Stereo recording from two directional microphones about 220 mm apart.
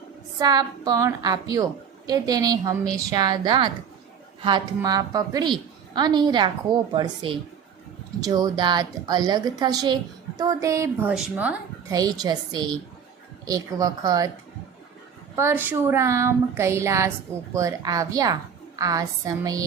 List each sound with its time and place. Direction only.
0.3 s a woman's voice: 15° right (ahead or behind)
15.4 s a woman's voice: 10° right (ahead or behind)